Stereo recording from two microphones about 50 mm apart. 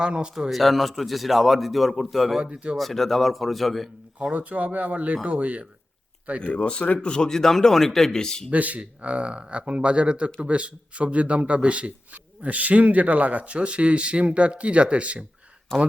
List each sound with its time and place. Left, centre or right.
0.0 s speech: centre
0.5 s a man's voice: centre
2.4 s speech: right
2.7 s a man's voice: centre
4.2 s speech: right
6.4 s a man's voice: left
8.4 s speech: right
15.7 s a man's voice: centre